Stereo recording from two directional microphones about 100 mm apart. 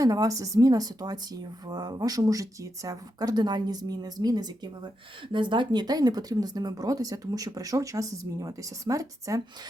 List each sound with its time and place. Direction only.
0.0 s speech: 35° right (ahead or behind)